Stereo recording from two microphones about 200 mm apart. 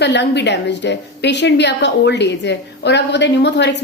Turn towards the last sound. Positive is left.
turn(degrees=60)  # may be behind; listen again after turning